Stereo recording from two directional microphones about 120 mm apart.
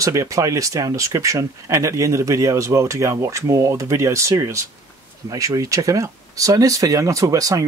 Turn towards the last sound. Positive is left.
turn(degrees=-30)  # may be behind; listen again after turning